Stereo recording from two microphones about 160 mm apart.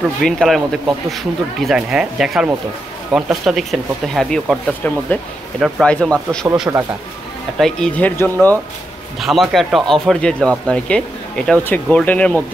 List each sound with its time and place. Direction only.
0.2 s speech: centre (ahead or behind)
6.4 s speech: 20° right (ahead or behind)
7.5 s speech: 5° left (ahead or behind)
9.2 s speech: centre (ahead or behind)